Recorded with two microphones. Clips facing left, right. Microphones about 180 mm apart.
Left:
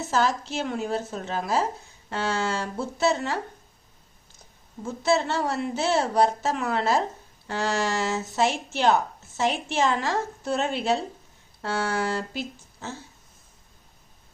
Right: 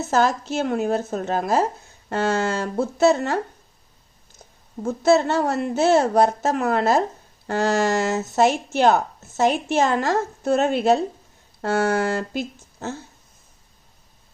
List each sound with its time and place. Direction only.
0.0 s a woman's voice: 45° right (ahead or behind)
4.8 s a woman's voice: 45° right (ahead or behind)